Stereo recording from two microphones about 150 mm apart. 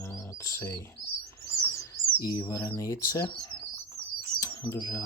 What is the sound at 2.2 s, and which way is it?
Speech, 25° left (ahead or behind).